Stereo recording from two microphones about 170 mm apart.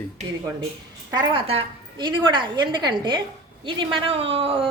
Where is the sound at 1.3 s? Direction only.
30° right (ahead or behind).